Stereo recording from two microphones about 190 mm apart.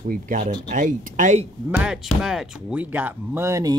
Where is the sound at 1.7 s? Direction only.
5° right (ahead or behind).